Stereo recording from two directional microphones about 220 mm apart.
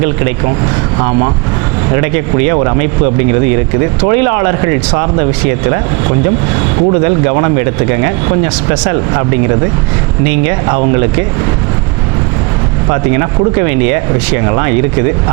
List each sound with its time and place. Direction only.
0.9 s speech: 25° right (ahead or behind)
2.5 s speech: 20° right (ahead or behind)
4.0 s speech: 20° right (ahead or behind)
7.0 s speech: 20° right (ahead or behind)
12.9 s speech: 20° right (ahead or behind)